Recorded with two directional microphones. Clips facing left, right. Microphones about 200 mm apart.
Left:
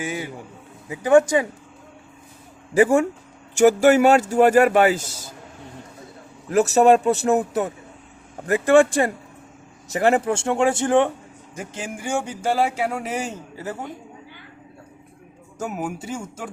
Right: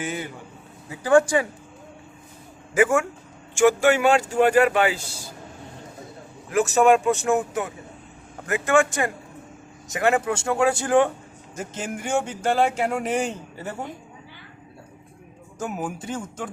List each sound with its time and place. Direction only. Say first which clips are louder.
0.0 s speech: left 2 dB; 10° left (ahead or behind)
2.7 s speech: left 4 dB; 35° left (ahead or behind)
6.5 s speech: left 3 dB; 40° left (ahead or behind); by 13.7 s 5° left (ahead or behind)
15.5 s speech: left 1 dB; 10° left (ahead or behind)